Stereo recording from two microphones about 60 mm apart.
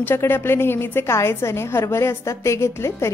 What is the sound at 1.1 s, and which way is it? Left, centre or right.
A woman's voice, left.